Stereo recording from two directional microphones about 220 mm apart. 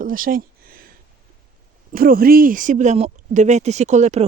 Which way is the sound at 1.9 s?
40° right (ahead or behind).